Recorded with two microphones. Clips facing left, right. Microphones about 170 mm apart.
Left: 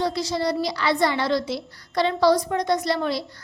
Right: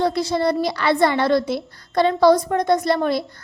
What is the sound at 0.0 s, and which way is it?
A woman's voice, 55° right (ahead or behind).